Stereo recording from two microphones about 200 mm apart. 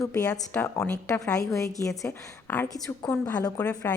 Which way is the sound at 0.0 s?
15° left (ahead or behind).